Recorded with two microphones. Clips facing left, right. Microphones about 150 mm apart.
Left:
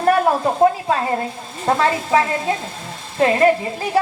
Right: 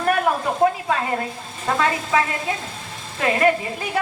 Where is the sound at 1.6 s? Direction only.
30° left (ahead or behind).